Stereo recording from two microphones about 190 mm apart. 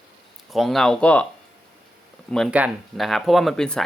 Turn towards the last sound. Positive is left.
turn(degrees=5)  # may be behind; listen again after turning